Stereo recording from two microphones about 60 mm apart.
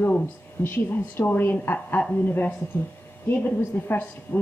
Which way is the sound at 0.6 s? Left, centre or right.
Left.